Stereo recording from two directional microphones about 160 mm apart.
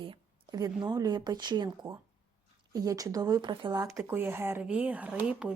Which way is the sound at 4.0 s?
15° right (ahead or behind).